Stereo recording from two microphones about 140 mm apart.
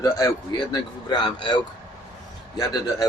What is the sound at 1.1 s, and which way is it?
Speech, 35° left (ahead or behind).